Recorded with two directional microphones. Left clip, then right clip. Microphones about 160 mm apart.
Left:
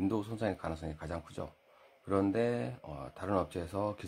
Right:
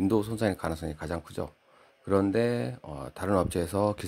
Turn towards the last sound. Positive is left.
turn(degrees=-35)  # may be behind; listen again after turning